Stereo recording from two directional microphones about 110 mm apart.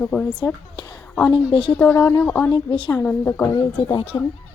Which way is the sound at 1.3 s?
45° left (ahead or behind).